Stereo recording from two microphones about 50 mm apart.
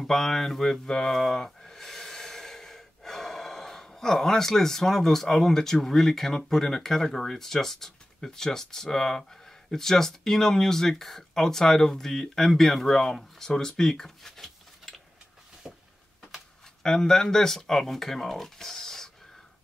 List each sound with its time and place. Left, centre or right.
0.0 s speech: centre
15.7 s a sound: centre
16.8 s speech: centre